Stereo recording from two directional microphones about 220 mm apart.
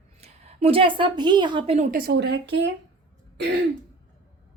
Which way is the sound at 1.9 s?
45° right (ahead or behind).